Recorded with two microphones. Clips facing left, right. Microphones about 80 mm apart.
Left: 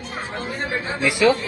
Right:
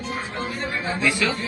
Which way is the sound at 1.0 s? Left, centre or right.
Centre.